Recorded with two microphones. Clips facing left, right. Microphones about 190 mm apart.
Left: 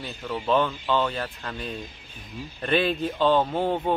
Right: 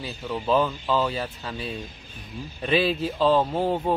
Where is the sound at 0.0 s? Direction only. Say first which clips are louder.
Right 1 dB; 5° right (ahead or behind).